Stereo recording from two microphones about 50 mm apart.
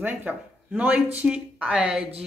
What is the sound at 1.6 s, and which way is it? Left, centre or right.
Speech, centre.